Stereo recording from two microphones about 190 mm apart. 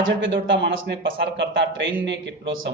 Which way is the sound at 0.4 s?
70° right (ahead or behind).